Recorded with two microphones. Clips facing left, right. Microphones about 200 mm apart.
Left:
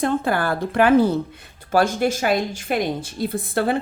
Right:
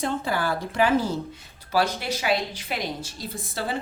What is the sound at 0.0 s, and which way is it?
A woman's voice, 55° left (ahead or behind).